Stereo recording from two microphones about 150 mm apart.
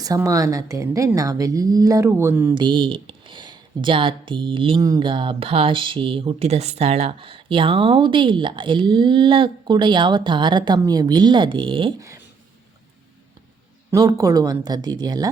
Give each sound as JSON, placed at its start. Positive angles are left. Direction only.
{"t": 0.0, "sound": "a woman's voice", "side_deg": -20}
{"t": 2.6, "sound": "speech", "side_deg": -30}
{"t": 11.9, "sound": "speech", "side_deg": -20}
{"t": 13.9, "sound": "a woman's voice", "side_deg": -25}